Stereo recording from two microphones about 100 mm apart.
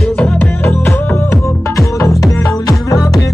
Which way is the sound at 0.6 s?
20° left (ahead or behind).